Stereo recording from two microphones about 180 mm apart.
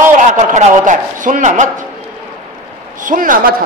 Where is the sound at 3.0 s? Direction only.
50° right (ahead or behind).